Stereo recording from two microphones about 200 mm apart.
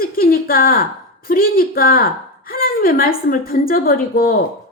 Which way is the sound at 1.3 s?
45° left (ahead or behind).